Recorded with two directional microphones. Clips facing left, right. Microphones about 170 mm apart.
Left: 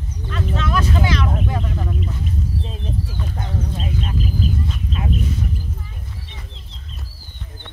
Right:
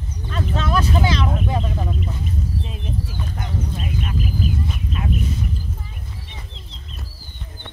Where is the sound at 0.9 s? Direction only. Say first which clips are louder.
Even; 25° right (ahead or behind).